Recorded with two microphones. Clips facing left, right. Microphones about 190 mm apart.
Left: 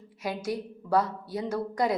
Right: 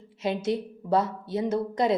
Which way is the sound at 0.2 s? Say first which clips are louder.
Right 5 dB; 25° right (ahead or behind).